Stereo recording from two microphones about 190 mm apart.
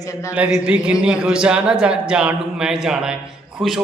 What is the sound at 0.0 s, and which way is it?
Speech, 15° left (ahead or behind).